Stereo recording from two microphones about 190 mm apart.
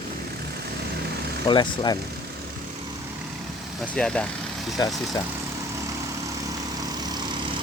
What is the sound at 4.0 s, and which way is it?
Speech, 5° left (ahead or behind).